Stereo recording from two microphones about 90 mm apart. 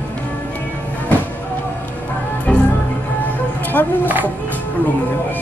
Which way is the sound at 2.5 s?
15° left (ahead or behind).